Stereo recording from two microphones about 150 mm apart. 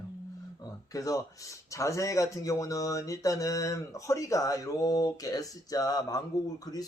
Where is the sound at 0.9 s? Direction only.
20° left (ahead or behind).